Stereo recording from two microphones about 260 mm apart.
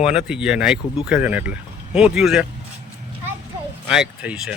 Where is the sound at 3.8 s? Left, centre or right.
Centre.